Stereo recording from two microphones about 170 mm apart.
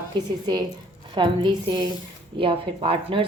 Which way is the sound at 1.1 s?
25° right (ahead or behind).